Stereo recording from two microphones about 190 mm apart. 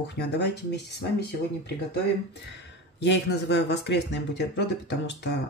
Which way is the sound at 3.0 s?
65° left (ahead or behind).